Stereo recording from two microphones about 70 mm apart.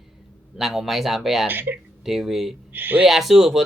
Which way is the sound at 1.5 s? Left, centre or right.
Right.